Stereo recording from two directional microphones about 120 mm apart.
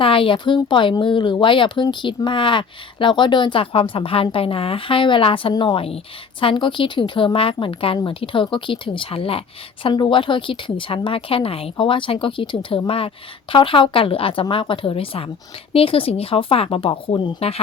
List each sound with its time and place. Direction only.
0.0 s speech: 45° left (ahead or behind)
17.1 s speech: 40° left (ahead or behind)